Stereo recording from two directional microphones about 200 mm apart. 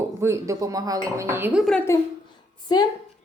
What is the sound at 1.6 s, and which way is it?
Speech, centre (ahead or behind).